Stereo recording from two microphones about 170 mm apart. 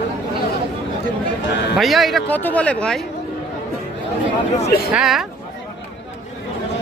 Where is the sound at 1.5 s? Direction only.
80° left.